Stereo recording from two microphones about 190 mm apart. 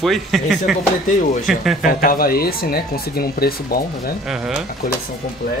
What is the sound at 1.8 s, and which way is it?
Speech, 50° left (ahead or behind).